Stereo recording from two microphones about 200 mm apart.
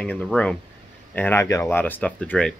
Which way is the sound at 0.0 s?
5° left (ahead or behind).